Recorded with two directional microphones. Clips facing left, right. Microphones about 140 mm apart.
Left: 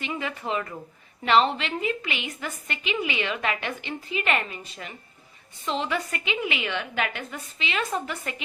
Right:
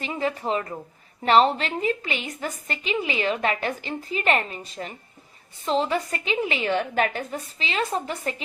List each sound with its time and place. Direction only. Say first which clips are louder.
0.0 s a woman's voice: right 4 dB; 35° right (ahead or behind)